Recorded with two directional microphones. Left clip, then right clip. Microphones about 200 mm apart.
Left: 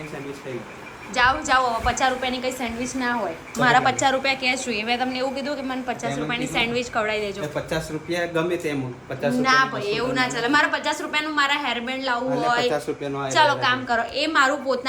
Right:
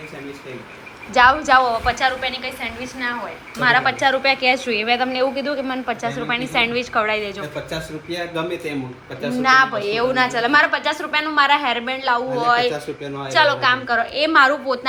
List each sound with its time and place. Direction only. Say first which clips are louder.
1.1 s a woman's voice: right 6 dB; 5° left (ahead or behind)